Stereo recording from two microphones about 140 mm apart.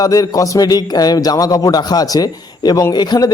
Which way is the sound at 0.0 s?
25° left (ahead or behind).